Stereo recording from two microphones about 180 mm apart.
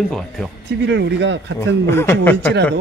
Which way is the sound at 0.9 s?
75° right (ahead or behind).